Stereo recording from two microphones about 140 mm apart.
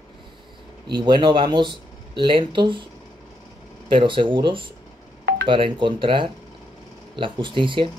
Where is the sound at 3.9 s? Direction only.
35° right (ahead or behind).